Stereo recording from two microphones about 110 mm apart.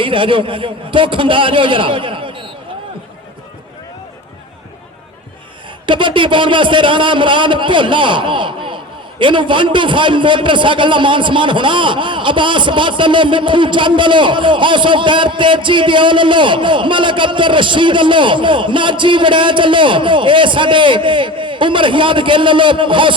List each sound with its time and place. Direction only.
0.0 s a man's voice: 50° right (ahead or behind)
5.8 s a man's voice: 50° right (ahead or behind)